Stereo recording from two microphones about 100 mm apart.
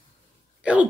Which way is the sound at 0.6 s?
10° right (ahead or behind).